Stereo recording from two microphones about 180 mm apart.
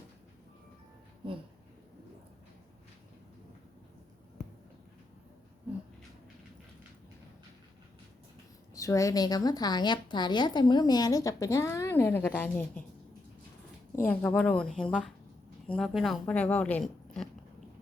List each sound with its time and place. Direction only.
8.7 s a woman's voice: 15° left (ahead or behind)
13.9 s a woman's voice: 10° left (ahead or behind)